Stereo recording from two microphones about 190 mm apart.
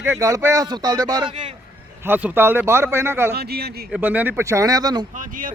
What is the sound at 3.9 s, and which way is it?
Speech, 10° right (ahead or behind).